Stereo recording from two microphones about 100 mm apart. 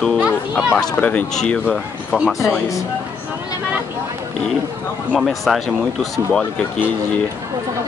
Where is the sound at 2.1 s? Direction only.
5° right (ahead or behind).